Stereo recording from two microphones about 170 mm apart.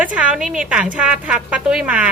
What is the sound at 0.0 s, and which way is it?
A woman's voice, 5° right (ahead or behind).